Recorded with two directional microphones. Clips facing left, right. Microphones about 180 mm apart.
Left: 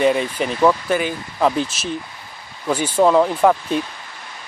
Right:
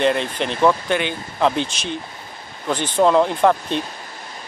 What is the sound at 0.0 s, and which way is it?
Speech, 5° left (ahead or behind).